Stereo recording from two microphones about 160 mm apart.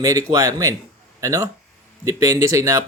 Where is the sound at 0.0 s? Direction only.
20° right (ahead or behind).